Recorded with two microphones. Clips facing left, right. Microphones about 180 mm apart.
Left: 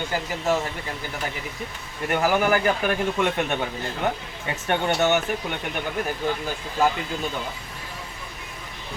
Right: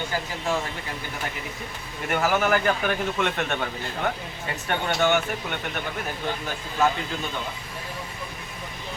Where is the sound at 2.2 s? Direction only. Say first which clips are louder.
Left 1 dB; 15° left (ahead or behind).